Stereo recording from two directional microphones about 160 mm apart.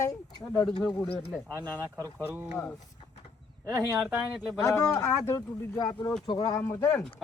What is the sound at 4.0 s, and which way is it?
Speech, centre (ahead or behind).